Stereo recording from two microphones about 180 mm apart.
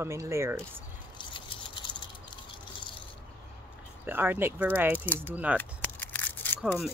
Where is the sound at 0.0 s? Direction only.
15° right (ahead or behind).